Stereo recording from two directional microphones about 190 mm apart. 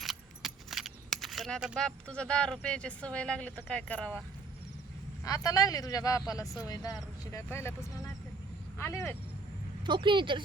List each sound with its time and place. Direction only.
0.0 s speech: centre (ahead or behind)
5.2 s speech: 20° left (ahead or behind)
9.8 s a woman's voice: 25° right (ahead or behind)